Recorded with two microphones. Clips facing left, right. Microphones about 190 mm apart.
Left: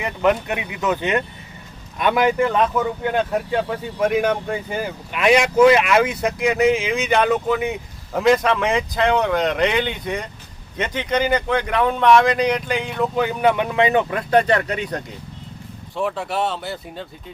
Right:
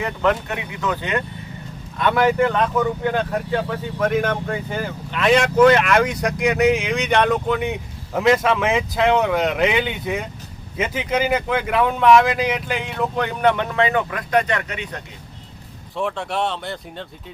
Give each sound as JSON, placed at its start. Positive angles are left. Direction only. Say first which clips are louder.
{"t": 0.0, "sound": "speech", "louder": "left 1 dB", "side_deg": 15}
{"t": 4.0, "sound": "speech", "louder": "left 2 dB", "side_deg": 15}
{"t": 14.1, "sound": "speech", "louder": "left 3 dB", "side_deg": 30}
{"t": 16.0, "sound": "speech", "louder": "left 1 dB", "side_deg": 5}